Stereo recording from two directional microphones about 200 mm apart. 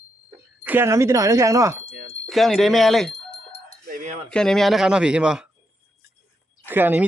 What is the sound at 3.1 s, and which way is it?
Chicken, 25° left (ahead or behind).